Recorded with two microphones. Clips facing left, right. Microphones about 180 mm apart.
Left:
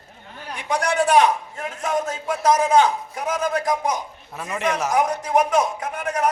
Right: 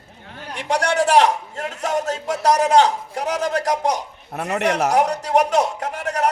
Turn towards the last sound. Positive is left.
turn(degrees=-75)  # may be behind; listen again after turning